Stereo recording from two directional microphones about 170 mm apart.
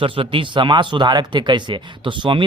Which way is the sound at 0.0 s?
30° right (ahead or behind).